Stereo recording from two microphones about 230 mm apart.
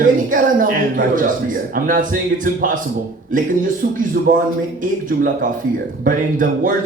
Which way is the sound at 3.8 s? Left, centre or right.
Right.